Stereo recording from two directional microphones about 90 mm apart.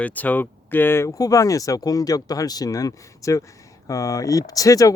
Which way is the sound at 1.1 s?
40° left (ahead or behind).